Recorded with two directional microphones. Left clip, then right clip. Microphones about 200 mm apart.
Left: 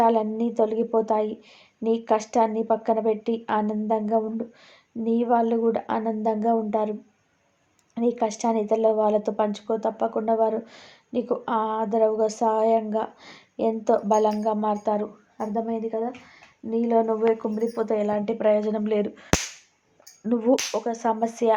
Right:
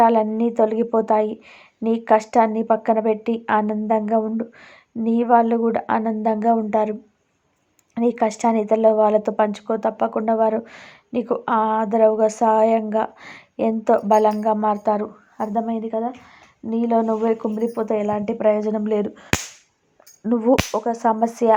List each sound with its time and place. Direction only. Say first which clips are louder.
0.0 s speech: right 5 dB; 20° right (ahead or behind)
7.9 s speech: right 4 dB; 25° right (ahead or behind)